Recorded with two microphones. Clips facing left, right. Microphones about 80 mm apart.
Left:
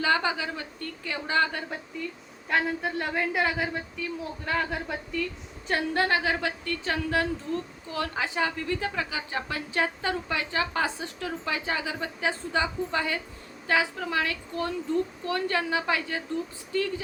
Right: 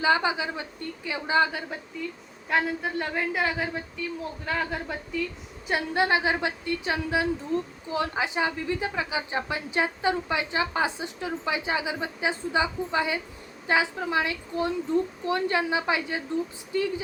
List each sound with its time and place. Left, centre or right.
0.0 s a woman's voice: centre
2.0 s a woman's voice: centre